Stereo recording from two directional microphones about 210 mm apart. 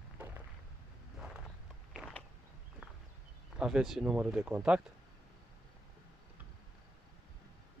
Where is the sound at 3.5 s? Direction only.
5° right (ahead or behind).